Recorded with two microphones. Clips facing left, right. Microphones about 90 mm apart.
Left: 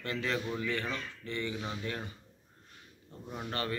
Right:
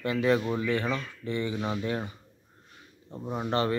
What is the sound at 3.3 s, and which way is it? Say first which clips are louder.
Speech: right 9 dB; 25° right (ahead or behind).